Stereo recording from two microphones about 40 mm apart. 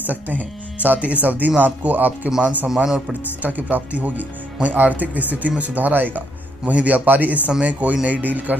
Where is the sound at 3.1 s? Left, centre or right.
Right.